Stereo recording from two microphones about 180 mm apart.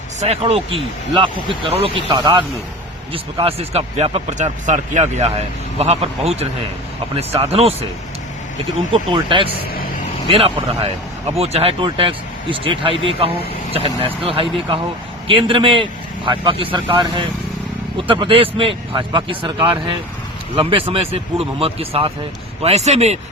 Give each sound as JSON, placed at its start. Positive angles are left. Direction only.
{"t": 0.2, "sound": "speech", "side_deg": -35}
{"t": 8.9, "sound": "speech", "side_deg": -30}